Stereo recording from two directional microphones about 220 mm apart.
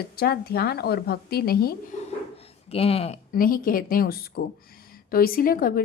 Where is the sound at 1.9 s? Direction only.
35° left (ahead or behind).